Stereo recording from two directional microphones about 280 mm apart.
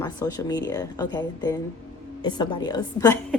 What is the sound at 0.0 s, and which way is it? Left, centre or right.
A woman's voice, centre.